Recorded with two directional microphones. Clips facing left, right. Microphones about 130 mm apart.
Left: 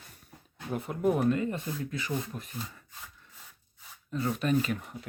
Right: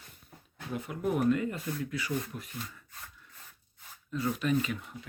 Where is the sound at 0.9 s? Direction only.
35° left (ahead or behind).